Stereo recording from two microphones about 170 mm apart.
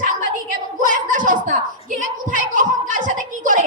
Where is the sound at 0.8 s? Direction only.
50° right (ahead or behind).